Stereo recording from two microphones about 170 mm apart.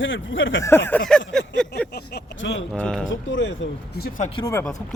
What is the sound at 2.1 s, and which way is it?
Speech, 90° left.